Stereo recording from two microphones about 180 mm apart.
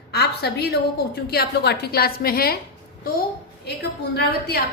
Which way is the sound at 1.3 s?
60° left (ahead or behind).